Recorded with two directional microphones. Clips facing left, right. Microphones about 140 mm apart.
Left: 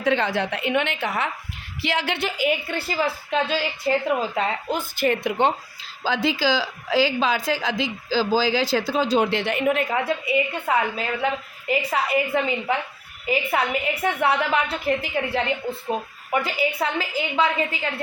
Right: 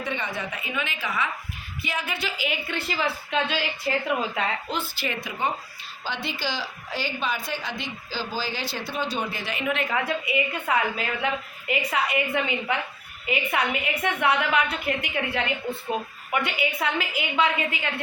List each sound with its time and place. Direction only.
0.0 s a woman's voice: 90° left; by 1.3 s 60° left (ahead or behind)
1.8 s speech: 80° left
2.2 s a woman's voice: 45° left (ahead or behind)
4.7 s a woman's voice: 50° left (ahead or behind); by 5.5 s 70° left (ahead or behind)
6.2 s a woman's voice: 90° left; by 9.7 s 55° left (ahead or behind)
9.9 s a woman's voice: 30° left (ahead or behind)